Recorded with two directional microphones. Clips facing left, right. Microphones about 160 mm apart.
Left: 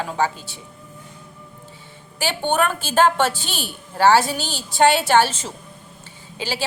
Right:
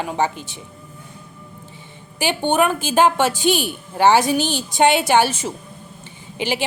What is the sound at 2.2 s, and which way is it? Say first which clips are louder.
A woman's voice: right 3 dB; 15° right (ahead or behind).